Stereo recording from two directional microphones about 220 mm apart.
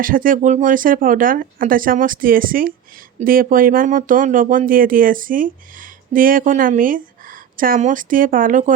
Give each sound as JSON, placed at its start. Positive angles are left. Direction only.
{"t": 0.0, "sound": "speech", "side_deg": -40}